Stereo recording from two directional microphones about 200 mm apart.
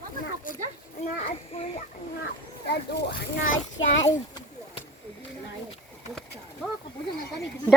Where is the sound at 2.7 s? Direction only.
55° left (ahead or behind).